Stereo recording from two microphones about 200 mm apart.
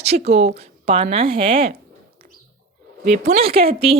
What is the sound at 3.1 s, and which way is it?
Speech, 35° right (ahead or behind).